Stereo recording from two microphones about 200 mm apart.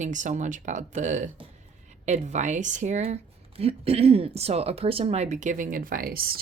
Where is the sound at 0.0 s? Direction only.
40° right (ahead or behind).